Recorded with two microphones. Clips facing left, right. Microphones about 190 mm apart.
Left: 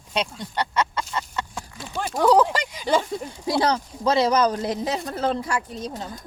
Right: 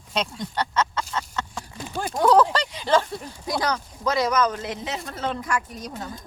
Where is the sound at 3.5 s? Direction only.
30° left (ahead or behind).